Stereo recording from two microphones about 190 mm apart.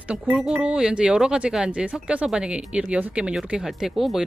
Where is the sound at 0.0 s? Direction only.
5° right (ahead or behind).